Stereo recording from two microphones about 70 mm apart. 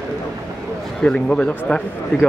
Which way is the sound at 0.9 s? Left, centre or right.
Centre.